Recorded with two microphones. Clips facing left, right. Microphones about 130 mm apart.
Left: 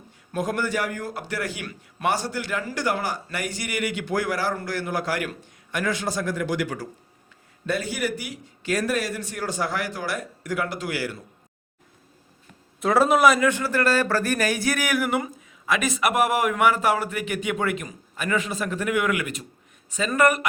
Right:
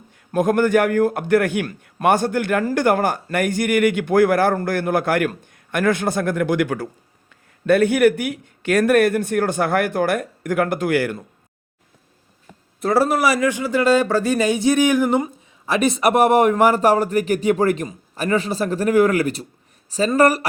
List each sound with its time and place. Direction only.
0.3 s a man's voice: 55° right (ahead or behind)
12.8 s a man's voice: centre (ahead or behind)
13.5 s speech: 15° right (ahead or behind); by 20.5 s 35° right (ahead or behind)